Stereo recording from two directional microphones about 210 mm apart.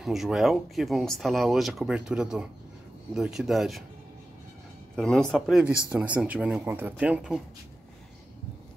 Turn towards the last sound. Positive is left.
turn(degrees=-5)  # may be behind; listen again after turning